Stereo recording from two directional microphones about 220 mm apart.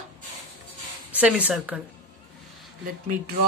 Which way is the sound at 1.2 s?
5° right (ahead or behind).